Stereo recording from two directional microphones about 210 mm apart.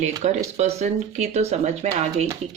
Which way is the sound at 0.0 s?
30° right (ahead or behind).